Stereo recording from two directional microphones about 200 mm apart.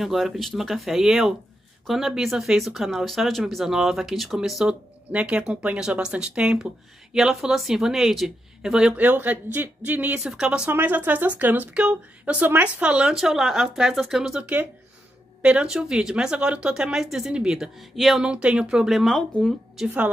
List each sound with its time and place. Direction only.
0.0 s speech: centre (ahead or behind)